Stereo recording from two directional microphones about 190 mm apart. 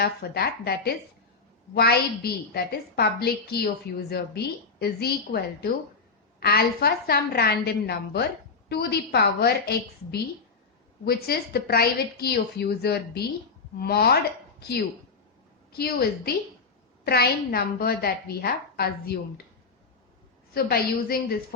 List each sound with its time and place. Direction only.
0.0 s a woman's voice: 55° left (ahead or behind)
15.8 s a woman's voice: 55° left (ahead or behind)
20.5 s a woman's voice: 55° left (ahead or behind)